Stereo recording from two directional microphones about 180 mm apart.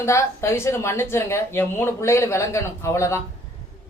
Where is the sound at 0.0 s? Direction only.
15° left (ahead or behind).